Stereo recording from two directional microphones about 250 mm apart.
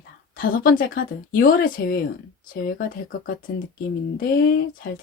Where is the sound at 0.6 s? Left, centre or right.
Left.